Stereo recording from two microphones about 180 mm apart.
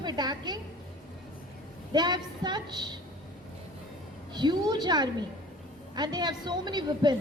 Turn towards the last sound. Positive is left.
turn(degrees=-25)  # may be behind; listen again after turning